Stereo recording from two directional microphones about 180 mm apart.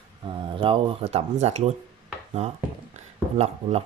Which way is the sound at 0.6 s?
30° right (ahead or behind).